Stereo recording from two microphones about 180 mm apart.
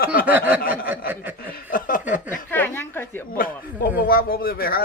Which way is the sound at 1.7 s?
50° left (ahead or behind).